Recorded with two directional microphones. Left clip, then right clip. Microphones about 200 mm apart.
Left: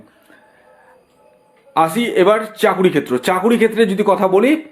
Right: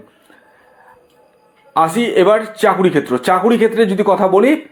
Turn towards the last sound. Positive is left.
turn(degrees=0)  # may be behind; listen again after turning